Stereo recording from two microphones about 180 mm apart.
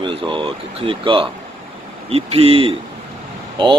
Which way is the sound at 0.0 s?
25° right (ahead or behind).